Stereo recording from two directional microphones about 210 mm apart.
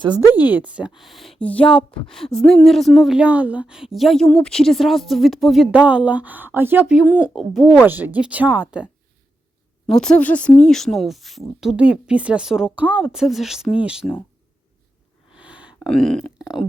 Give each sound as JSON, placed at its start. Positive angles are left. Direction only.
{"t": 0.2, "sound": "speech", "side_deg": 20}
{"t": 0.5, "sound": "speech", "side_deg": -5}
{"t": 15.4, "sound": "a sound", "side_deg": -5}